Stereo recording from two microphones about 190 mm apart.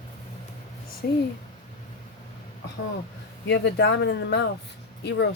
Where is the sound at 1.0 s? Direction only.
55° left (ahead or behind).